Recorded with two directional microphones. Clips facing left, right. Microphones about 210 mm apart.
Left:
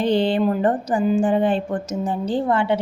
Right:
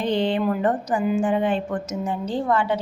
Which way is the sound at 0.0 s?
30° left (ahead or behind).